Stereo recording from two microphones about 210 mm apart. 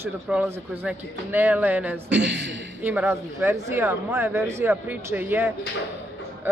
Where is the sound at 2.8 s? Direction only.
10° right (ahead or behind).